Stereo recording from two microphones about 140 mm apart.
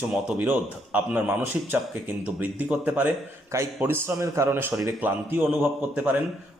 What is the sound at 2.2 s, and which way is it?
A man's voice, 10° right (ahead or behind).